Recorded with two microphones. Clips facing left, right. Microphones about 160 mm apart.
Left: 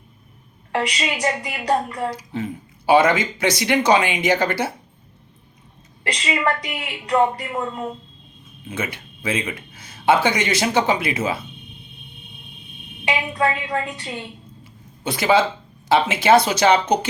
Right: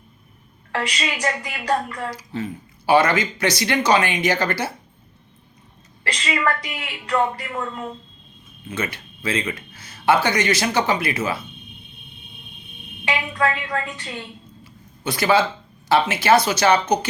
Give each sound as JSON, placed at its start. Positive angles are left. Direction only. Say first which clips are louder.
{"t": 0.7, "sound": "a woman's voice", "louder": "left 2 dB", "side_deg": 20}
{"t": 6.1, "sound": "a woman's voice", "louder": "left 1 dB", "side_deg": 15}
{"t": 13.1, "sound": "a woman's voice", "louder": "left 1 dB", "side_deg": 20}